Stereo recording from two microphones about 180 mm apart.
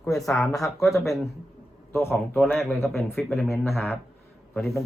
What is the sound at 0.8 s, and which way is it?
Speech, centre (ahead or behind).